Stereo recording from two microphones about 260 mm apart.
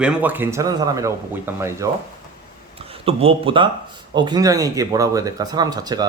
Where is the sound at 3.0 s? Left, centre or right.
Right.